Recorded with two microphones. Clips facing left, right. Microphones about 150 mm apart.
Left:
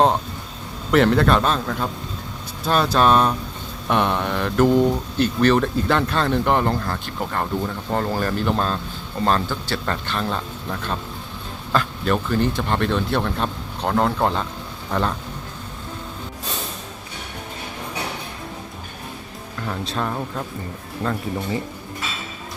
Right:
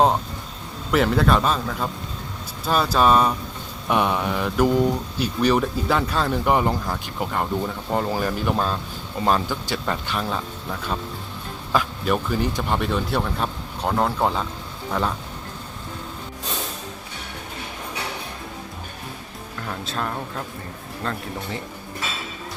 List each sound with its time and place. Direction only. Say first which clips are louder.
0.9 s a man's voice: left 3 dB; 5° right (ahead or behind)
19.6 s a man's voice: left 3 dB; centre (ahead or behind)